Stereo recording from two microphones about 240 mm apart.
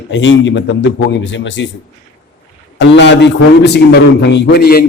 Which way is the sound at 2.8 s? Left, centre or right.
Left.